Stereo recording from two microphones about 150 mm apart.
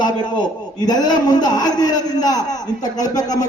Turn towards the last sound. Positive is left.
turn(degrees=25)  # may be behind; listen again after turning